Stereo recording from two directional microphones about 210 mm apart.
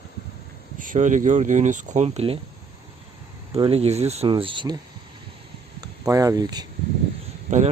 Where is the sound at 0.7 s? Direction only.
40° right (ahead or behind).